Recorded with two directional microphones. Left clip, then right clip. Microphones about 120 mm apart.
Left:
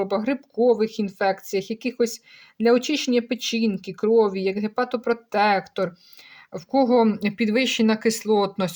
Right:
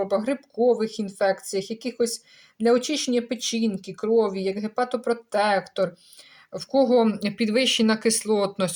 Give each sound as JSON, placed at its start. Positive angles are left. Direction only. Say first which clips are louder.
{"t": 0.0, "sound": "speech", "louder": "even", "side_deg": 40}